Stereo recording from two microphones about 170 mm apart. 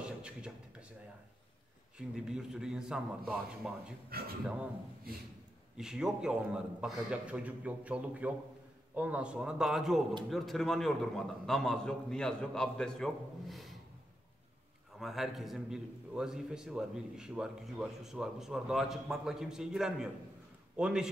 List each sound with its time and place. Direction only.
0.0 s a sound: 5° right (ahead or behind)
2.0 s a man's voice: 5° right (ahead or behind)
4.1 s speech: 60° right (ahead or behind)
5.8 s a man's voice: 5° right (ahead or behind)
15.0 s a man's voice: centre (ahead or behind)